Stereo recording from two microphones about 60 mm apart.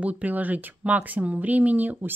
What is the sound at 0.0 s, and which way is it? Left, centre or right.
Speech, right.